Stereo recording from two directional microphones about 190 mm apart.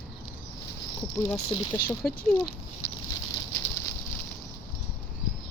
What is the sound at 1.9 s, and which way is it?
Speech, centre (ahead or behind).